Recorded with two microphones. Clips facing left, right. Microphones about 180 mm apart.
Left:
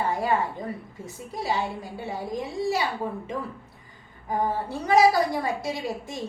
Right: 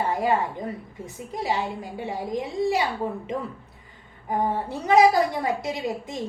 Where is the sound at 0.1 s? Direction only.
20° right (ahead or behind).